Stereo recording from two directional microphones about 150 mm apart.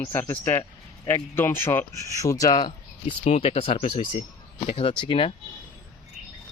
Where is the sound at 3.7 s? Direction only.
60° left (ahead or behind).